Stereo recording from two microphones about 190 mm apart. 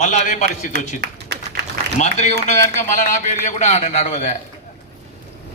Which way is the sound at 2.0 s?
35° left (ahead or behind).